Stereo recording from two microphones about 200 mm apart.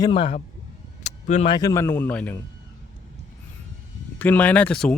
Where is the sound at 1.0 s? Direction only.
35° left (ahead or behind).